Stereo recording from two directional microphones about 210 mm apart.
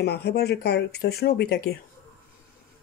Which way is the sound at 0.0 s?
50° left (ahead or behind).